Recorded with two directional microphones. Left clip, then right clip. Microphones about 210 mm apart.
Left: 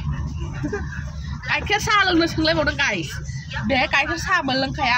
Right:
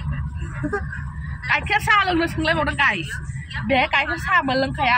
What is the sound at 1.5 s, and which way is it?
Speech, 20° left (ahead or behind).